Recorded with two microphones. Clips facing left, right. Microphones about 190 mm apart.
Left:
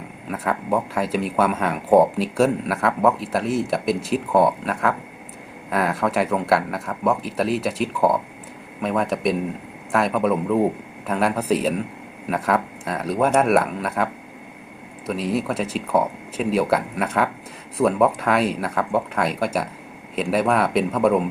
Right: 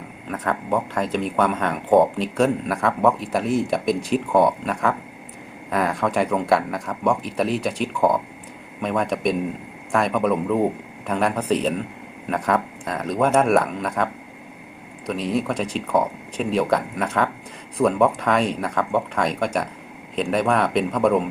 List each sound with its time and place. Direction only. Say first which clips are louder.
0.3 s speech: left 1 dB; 5° left (ahead or behind)